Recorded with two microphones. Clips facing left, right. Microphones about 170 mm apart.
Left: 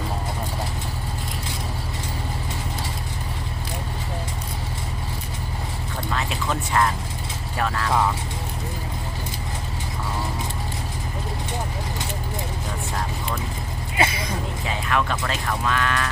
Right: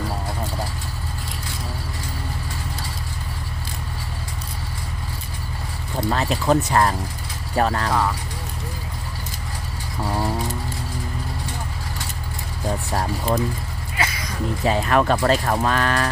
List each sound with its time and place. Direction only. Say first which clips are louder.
6.1 s speech: right 7 dB; 40° right (ahead or behind)
12.9 s speech: right 7 dB; 40° right (ahead or behind)
13.9 s vehicle: left 4 dB; 25° left (ahead or behind)
14.6 s speech: right 7 dB; 40° right (ahead or behind)